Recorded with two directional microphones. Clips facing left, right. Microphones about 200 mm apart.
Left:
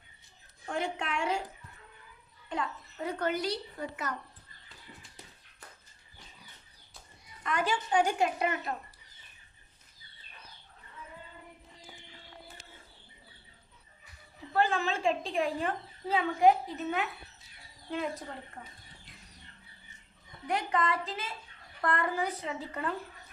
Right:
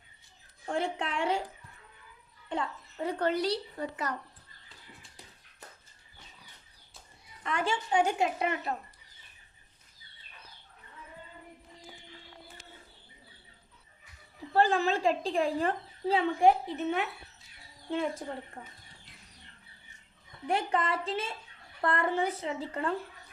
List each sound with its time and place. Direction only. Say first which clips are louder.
0.7 s a woman's voice: right 2 dB; 30° right (ahead or behind)
2.5 s a woman's voice: right 1 dB; 30° right (ahead or behind)
7.4 s a woman's voice: even; 25° right (ahead or behind)
14.5 s a woman's voice: right 3 dB; 35° right (ahead or behind)
20.5 s a woman's voice: right 1 dB; 30° right (ahead or behind)